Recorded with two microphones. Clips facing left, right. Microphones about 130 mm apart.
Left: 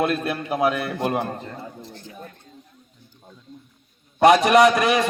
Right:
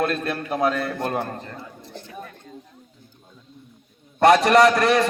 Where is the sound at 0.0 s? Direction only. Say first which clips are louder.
Left 1 dB; 10° left (ahead or behind).